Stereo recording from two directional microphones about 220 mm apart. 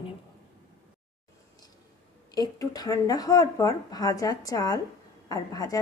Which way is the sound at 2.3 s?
15° left (ahead or behind).